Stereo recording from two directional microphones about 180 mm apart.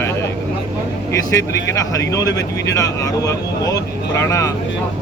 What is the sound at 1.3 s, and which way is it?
Speech, 15° left (ahead or behind).